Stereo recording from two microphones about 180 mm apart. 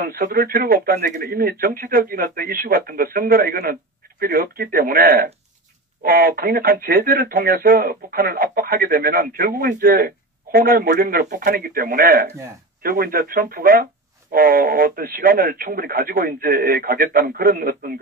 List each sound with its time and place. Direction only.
0.0 s speech: 55° right (ahead or behind)